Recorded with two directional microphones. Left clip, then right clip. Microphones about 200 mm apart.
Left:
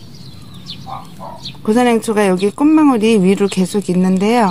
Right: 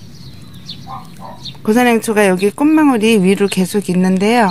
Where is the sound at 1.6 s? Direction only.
15° right (ahead or behind).